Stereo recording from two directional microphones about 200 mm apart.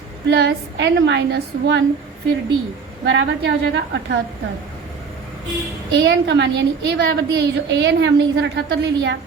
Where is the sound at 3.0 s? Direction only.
65° right (ahead or behind).